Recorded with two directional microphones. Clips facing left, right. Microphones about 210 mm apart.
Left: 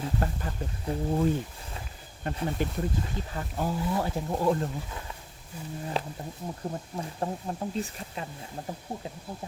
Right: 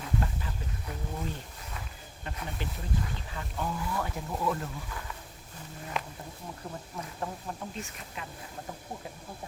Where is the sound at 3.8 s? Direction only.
25° left (ahead or behind).